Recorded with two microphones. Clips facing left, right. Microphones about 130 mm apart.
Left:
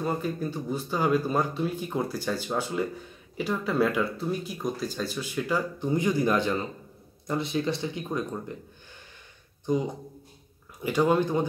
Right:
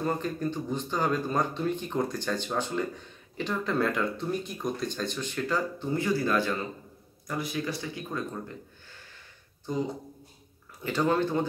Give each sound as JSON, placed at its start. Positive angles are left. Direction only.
{"t": 0.0, "sound": "speech", "side_deg": 10}
{"t": 9.7, "sound": "speech", "side_deg": 20}